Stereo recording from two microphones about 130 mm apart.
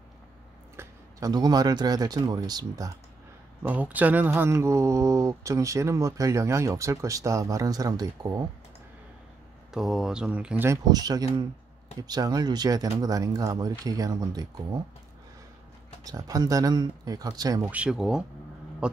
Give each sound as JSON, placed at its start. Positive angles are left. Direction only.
{"t": 0.7, "sound": "speech", "side_deg": -30}
{"t": 3.6, "sound": "speech", "side_deg": -10}
{"t": 9.8, "sound": "speech", "side_deg": -5}
{"t": 10.9, "sound": "speech", "side_deg": -30}
{"t": 16.0, "sound": "speech", "side_deg": -30}
{"t": 17.6, "sound": "speech", "side_deg": -10}